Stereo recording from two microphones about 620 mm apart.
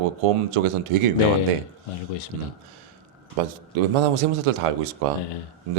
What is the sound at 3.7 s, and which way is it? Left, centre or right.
A man's voice, right.